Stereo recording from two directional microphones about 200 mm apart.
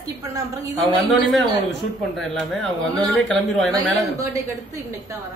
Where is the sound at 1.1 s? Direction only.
Centre (ahead or behind).